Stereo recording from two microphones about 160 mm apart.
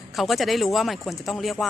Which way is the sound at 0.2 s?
Centre (ahead or behind).